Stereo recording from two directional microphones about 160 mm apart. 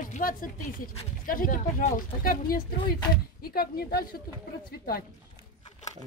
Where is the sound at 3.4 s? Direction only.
70° left (ahead or behind).